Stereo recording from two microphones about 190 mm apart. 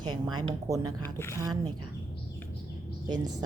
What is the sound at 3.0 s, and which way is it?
Speech, 20° right (ahead or behind).